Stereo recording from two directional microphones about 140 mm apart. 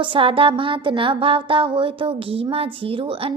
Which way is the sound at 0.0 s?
40° right (ahead or behind).